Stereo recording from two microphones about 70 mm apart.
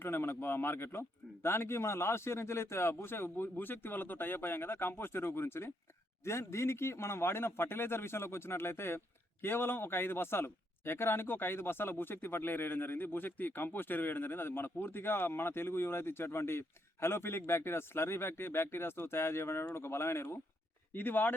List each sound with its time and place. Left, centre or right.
0.0 s speech: left